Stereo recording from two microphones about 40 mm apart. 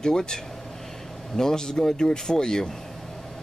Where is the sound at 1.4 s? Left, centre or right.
Centre.